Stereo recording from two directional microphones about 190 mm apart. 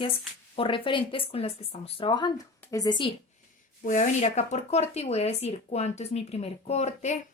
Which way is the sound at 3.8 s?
40° left (ahead or behind).